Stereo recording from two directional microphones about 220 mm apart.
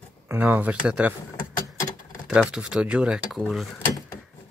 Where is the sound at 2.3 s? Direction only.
5° right (ahead or behind).